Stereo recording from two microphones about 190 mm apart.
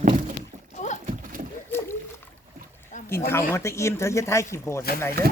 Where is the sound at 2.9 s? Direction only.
40° left (ahead or behind).